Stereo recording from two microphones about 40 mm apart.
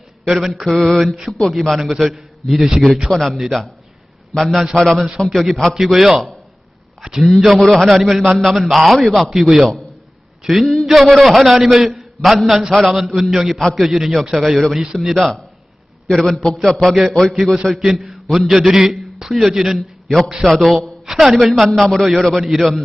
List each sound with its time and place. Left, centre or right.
0.3 s a man's voice: centre
0.8 s a man's voice: centre
1.0 s a man's voice: centre
1.3 s a man's voice: centre
2.9 s a man's voice: centre
7.4 s a man's voice: centre
17.3 s a man's voice: centre
21.1 s a man's voice: centre